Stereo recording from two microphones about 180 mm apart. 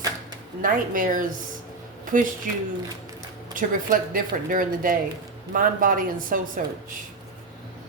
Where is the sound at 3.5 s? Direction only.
50° right (ahead or behind).